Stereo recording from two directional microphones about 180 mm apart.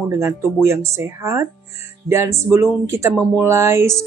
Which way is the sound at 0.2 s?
15° right (ahead or behind).